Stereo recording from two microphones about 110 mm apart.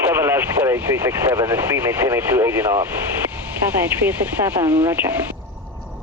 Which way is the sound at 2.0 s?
20° right (ahead or behind).